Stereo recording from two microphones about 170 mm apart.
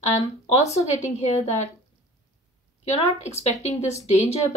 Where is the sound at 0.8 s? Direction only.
45° left (ahead or behind).